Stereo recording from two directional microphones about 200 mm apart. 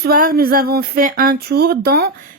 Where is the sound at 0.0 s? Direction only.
45° right (ahead or behind).